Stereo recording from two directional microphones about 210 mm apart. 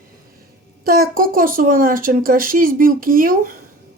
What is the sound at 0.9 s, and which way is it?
A woman's voice, 45° right (ahead or behind).